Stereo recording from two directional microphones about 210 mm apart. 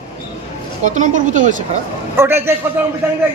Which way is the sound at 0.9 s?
35° right (ahead or behind).